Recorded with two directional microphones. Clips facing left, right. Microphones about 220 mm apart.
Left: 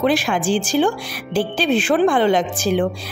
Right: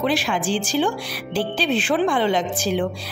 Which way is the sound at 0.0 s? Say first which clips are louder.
Left 4 dB; 50° left (ahead or behind).